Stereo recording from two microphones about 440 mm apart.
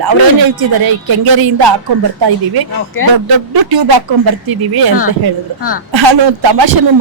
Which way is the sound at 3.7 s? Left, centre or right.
Right.